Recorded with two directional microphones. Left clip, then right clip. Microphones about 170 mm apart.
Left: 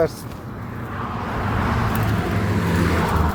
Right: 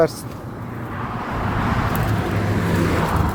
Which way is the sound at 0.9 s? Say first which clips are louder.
Even; 65° left (ahead or behind).